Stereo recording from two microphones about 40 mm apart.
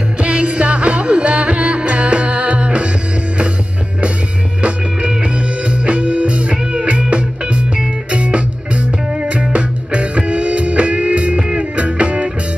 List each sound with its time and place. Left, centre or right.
0.2 s music: right
4.6 s music: right
6.5 s music: right